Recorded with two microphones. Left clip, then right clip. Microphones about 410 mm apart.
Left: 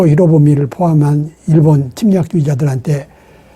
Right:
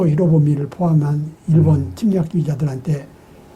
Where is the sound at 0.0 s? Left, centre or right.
Left.